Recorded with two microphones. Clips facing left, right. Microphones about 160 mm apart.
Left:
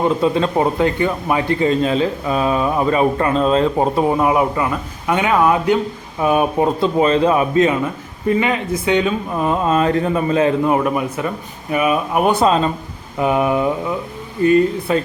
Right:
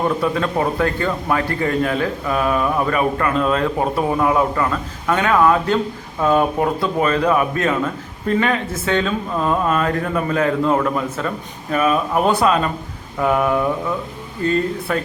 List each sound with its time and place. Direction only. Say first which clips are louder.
0.2 s a man's voice: left 3 dB; 25° left (ahead or behind)